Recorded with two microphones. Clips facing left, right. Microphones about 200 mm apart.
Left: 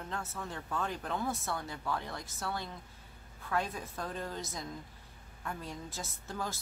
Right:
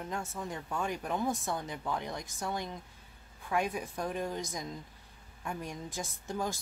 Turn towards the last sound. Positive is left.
turn(degrees=-15)  # may be behind; listen again after turning